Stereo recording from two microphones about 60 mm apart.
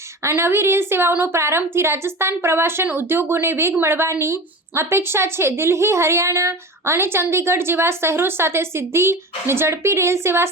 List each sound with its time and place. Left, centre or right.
0.3 s speech: right